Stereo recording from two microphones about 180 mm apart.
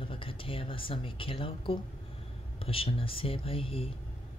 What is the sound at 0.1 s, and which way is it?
Speech, 30° left (ahead or behind).